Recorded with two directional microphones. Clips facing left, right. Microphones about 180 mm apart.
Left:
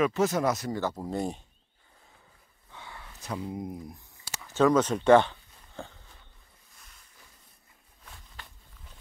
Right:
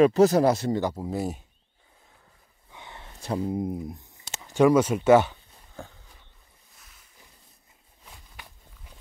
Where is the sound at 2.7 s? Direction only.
20° right (ahead or behind).